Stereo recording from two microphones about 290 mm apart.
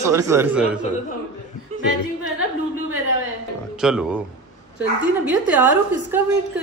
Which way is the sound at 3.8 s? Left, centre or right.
Centre.